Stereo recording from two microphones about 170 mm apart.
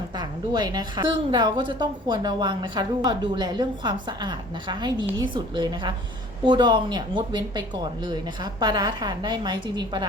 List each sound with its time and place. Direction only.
0.2 s a woman's voice: 25° right (ahead or behind)
8.6 s a woman's voice: 25° right (ahead or behind)